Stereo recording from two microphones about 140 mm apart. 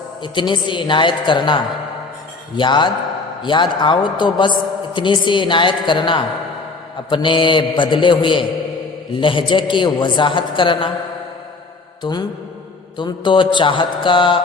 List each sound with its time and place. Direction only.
0.2 s a woman's voice: 35° left (ahead or behind)
12.0 s a woman's voice: 35° left (ahead or behind)